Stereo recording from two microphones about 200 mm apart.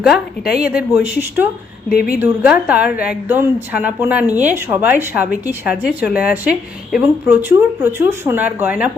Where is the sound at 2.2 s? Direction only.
5° right (ahead or behind).